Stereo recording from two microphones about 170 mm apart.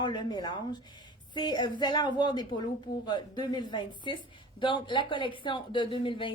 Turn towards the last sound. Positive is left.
turn(degrees=30)  # may be behind; listen again after turning